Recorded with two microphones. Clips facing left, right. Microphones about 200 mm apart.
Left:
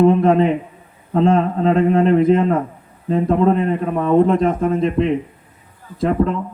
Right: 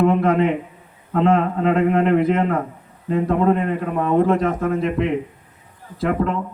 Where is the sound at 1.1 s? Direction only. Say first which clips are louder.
Left 2 dB; 30° left (ahead or behind).